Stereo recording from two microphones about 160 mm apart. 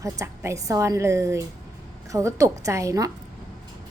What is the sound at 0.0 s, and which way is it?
A woman's voice, 20° right (ahead or behind).